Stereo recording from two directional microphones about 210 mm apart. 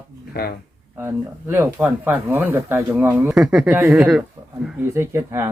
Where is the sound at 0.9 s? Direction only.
10° right (ahead or behind).